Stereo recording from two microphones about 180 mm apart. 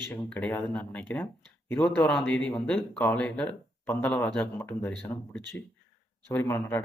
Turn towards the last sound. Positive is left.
turn(degrees=15)  # may be behind; listen again after turning